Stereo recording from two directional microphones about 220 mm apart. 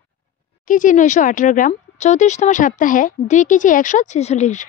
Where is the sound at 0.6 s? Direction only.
35° left (ahead or behind).